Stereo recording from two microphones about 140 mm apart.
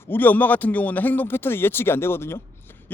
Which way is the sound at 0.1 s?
15° left (ahead or behind).